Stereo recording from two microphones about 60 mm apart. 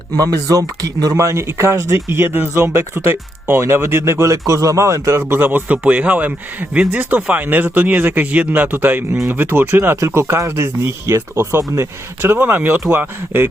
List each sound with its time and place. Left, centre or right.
0.2 s speech: right
1.1 s speech: right
5.2 s a man's voice: right
10.0 s speech: right